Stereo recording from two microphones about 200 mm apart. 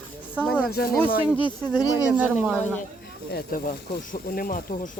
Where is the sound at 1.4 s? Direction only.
20° left (ahead or behind).